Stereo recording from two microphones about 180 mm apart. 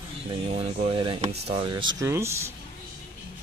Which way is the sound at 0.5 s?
30° right (ahead or behind).